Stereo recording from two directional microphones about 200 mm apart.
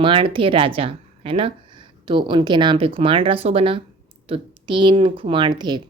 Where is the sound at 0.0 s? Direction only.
25° right (ahead or behind).